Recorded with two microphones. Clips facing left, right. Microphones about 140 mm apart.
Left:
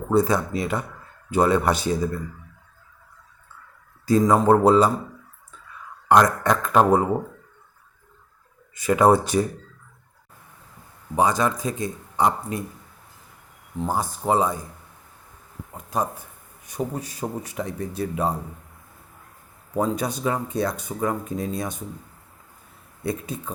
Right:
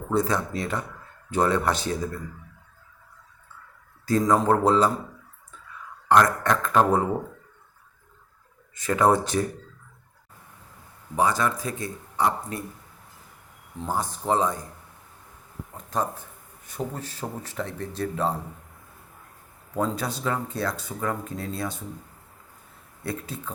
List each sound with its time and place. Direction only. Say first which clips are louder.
0.1 s speech: left 4 dB; 10° left (ahead or behind)
4.0 s a man's voice: left 3 dB; 10° left (ahead or behind)
6.1 s speech: left 2 dB; 15° left (ahead or behind)
8.7 s speech: left 4 dB; 10° left (ahead or behind)
11.2 s a man's voice: left 3 dB; 20° left (ahead or behind)
13.8 s speech: left 3 dB; 10° left (ahead or behind)
15.9 s speech: left 2 dB; 10° left (ahead or behind)
19.7 s speech: left 3 dB; 15° left (ahead or behind)
23.0 s speech: left 4 dB; 15° left (ahead or behind)